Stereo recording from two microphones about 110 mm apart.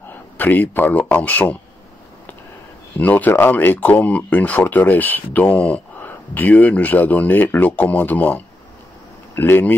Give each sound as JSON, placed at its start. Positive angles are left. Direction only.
{"t": 0.4, "sound": "speech", "side_deg": 15}
{"t": 3.0, "sound": "speech", "side_deg": 15}